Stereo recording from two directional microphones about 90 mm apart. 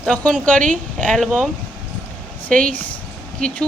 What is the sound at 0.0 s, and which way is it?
Speech, 15° left (ahead or behind).